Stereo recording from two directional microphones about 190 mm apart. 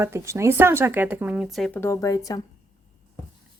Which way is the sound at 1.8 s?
15° left (ahead or behind).